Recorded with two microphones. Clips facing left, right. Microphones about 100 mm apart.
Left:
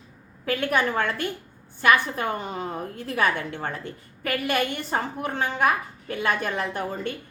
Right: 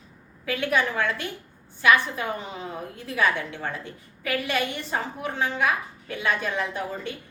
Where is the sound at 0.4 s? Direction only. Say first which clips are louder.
Left 1 dB; 50° left (ahead or behind).